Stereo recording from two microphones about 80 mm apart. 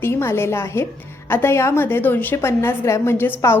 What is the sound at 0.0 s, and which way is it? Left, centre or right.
A woman's voice, left.